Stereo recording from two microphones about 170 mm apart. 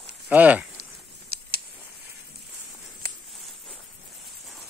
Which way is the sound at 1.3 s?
65° right (ahead or behind).